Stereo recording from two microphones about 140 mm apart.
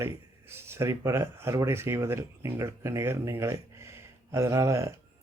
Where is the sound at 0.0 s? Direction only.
15° right (ahead or behind).